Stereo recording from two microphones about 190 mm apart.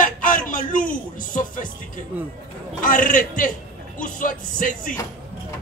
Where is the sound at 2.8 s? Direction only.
45° left (ahead or behind).